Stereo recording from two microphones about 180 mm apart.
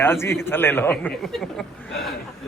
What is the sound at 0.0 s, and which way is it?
A man's voice, 15° left (ahead or behind).